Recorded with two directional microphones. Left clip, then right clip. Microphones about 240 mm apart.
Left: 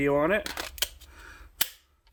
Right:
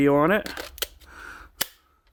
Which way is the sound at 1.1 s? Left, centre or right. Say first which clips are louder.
Right 8 dB; right.